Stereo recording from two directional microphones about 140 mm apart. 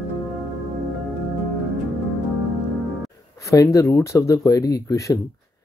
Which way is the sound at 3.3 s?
20° left (ahead or behind).